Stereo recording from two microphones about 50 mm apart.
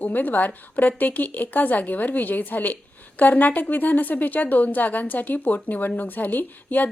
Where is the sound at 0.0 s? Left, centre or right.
Left.